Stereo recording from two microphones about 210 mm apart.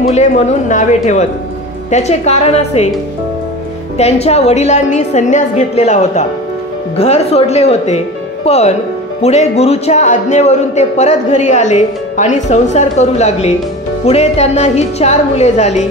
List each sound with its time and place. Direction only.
0.1 s a man's voice: 30° left (ahead or behind)
4.0 s a man's voice: 30° left (ahead or behind)